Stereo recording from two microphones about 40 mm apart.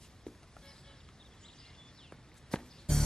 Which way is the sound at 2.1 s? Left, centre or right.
Centre.